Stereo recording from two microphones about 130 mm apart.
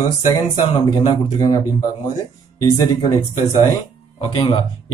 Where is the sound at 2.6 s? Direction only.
25° left (ahead or behind).